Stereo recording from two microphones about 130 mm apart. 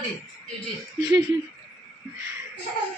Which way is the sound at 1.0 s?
30° right (ahead or behind).